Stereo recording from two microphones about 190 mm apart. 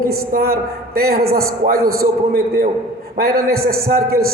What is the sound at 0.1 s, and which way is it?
A man's voice, 50° right (ahead or behind).